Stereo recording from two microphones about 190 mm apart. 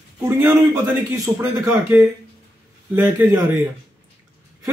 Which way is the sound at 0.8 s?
15° right (ahead or behind).